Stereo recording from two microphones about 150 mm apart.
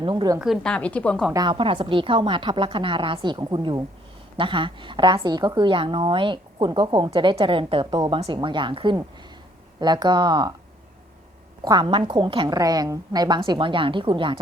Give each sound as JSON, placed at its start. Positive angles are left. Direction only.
{"t": 0.0, "sound": "speech", "side_deg": -30}
{"t": 0.3, "sound": "a woman's voice", "side_deg": 0}
{"t": 1.3, "sound": "a woman's voice", "side_deg": -30}
{"t": 11.6, "sound": "a woman's voice", "side_deg": -30}